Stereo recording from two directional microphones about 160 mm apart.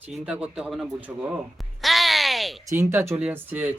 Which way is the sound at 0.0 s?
5° right (ahead or behind).